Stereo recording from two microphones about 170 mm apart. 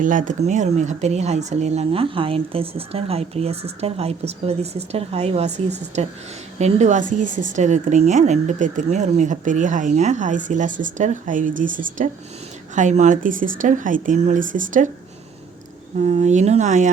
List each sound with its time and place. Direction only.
0.0 s speech: 50° right (ahead or behind)
16.0 s speech: 40° right (ahead or behind)